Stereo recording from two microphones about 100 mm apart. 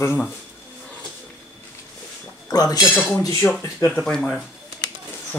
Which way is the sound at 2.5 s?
40° left (ahead or behind).